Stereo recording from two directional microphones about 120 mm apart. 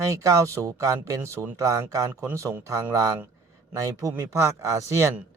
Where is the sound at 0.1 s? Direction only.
30° right (ahead or behind).